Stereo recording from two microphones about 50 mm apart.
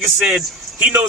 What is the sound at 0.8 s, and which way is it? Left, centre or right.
Speech, right.